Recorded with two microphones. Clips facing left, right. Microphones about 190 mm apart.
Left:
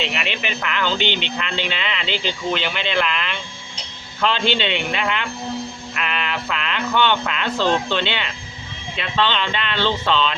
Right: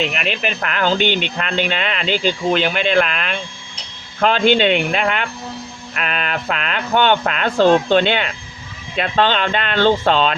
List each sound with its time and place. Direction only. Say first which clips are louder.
0.0 s speech: right 4 dB; 45° right (ahead or behind)